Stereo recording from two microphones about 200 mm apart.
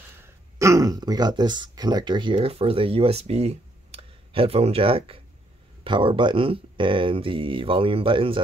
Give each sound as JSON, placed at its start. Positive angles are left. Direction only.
{"t": 0.6, "sound": "speech", "side_deg": -15}